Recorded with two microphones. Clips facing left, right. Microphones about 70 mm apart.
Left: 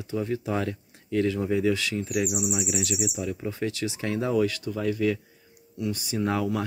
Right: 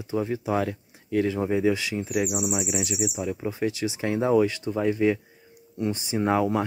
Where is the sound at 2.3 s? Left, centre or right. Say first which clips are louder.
Right 1 dB; right.